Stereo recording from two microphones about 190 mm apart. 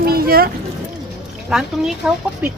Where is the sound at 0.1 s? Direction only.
50° right (ahead or behind).